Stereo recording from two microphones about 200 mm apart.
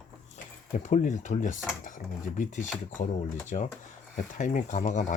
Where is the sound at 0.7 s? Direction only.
35° left (ahead or behind).